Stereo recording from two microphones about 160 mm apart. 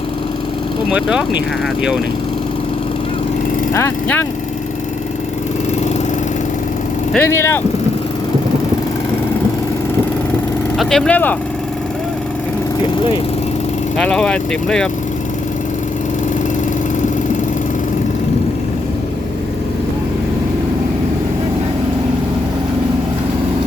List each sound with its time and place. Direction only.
0.9 s speech: 5° right (ahead or behind)
3.8 s speech: 15° left (ahead or behind)
7.1 s speech: 10° left (ahead or behind)
10.8 s speech: centre (ahead or behind)
14.0 s speech: 5° left (ahead or behind)